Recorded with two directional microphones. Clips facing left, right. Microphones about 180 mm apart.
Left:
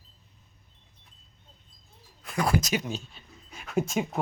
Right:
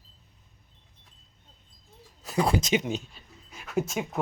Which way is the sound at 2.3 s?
30° right (ahead or behind).